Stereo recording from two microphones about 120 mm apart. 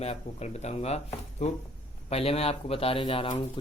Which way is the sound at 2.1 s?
55° left (ahead or behind).